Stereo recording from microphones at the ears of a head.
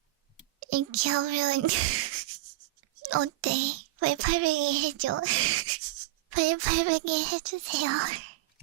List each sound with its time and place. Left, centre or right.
0.6 s a child's voice: right